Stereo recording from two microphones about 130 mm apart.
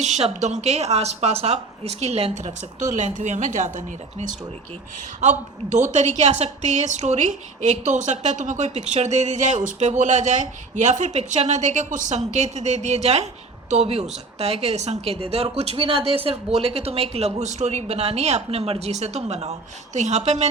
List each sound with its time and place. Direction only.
0.0 s a woman's voice: 65° right (ahead or behind)